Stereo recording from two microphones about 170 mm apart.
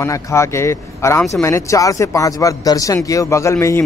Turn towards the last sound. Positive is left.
turn(degrees=15)  # may be behind; listen again after turning